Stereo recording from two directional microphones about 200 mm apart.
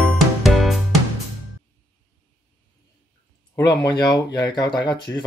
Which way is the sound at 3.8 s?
20° left (ahead or behind).